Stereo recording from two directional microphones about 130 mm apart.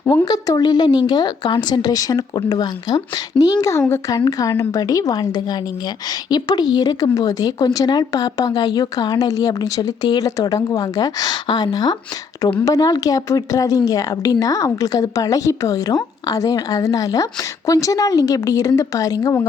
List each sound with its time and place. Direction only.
0.3 s a woman's voice: 30° left (ahead or behind)